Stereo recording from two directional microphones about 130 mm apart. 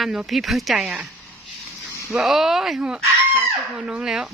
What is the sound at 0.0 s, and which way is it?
Speech, 5° right (ahead or behind).